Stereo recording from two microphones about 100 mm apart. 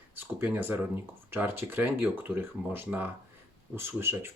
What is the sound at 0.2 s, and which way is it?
Speech, 20° right (ahead or behind).